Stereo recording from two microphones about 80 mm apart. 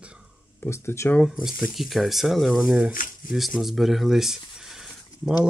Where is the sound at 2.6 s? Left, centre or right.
Centre.